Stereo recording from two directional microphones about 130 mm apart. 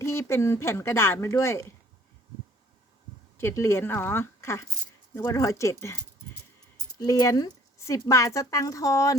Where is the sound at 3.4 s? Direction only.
20° left (ahead or behind).